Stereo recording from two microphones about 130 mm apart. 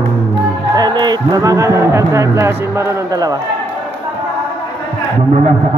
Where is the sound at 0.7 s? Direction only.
30° right (ahead or behind).